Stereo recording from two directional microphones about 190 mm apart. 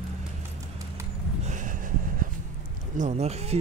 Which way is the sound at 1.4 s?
40° right (ahead or behind).